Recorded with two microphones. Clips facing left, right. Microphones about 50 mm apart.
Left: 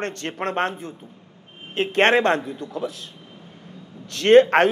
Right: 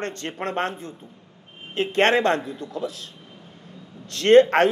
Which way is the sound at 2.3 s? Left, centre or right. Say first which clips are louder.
Left 1 dB; centre.